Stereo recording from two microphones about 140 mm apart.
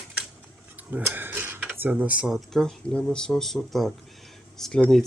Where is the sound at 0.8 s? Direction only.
10° right (ahead or behind).